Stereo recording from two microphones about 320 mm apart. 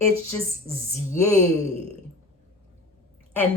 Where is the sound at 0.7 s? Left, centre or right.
Centre.